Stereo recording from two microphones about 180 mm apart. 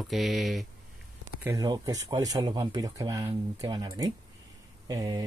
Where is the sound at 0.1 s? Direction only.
Centre (ahead or behind).